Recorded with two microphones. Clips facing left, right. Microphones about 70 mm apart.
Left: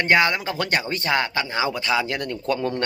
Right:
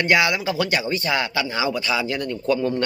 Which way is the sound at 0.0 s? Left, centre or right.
Left.